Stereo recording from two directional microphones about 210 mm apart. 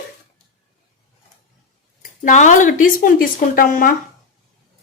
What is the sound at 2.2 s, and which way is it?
Speech, 35° left (ahead or behind).